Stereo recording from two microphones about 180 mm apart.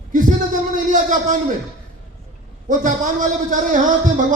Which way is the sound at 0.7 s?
45° right (ahead or behind).